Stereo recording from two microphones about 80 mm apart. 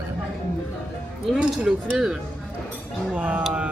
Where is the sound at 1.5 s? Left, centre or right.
Centre.